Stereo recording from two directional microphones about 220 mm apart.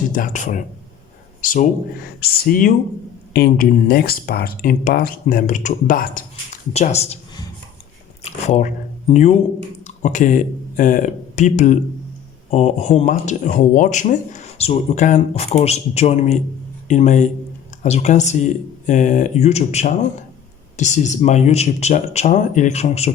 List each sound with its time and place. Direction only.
0.1 s speech: 35° left (ahead or behind)
8.2 s speech: 30° left (ahead or behind)